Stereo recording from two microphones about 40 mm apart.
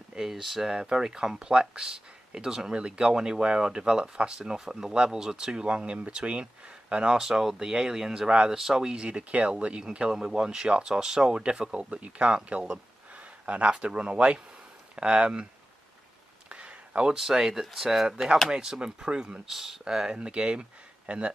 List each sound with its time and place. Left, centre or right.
0.2 s speech: centre
0.7 s speech: centre
4.4 s speech: centre
7.2 s speech: centre
8.9 s speech: right
10.1 s speech: centre
16.4 s a sound: right
17.2 s speech: centre
18.0 s speech: centre
19.5 s speech: centre
19.8 s speech: centre
20.2 s speech: right